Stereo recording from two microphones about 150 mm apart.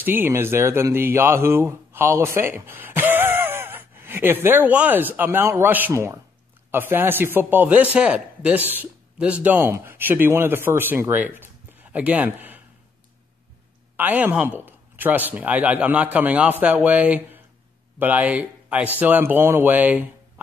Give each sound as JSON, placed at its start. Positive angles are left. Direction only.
{"t": 0.0, "sound": "a man's voice", "side_deg": -15}
{"t": 13.9, "sound": "a man's voice", "side_deg": -10}